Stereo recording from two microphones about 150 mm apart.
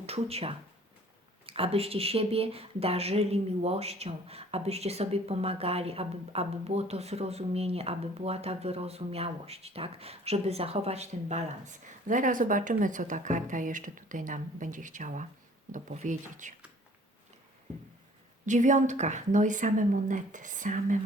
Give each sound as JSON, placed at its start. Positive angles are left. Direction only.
{"t": 0.0, "sound": "a woman's voice", "side_deg": -40}
{"t": 18.4, "sound": "a woman's voice", "side_deg": -55}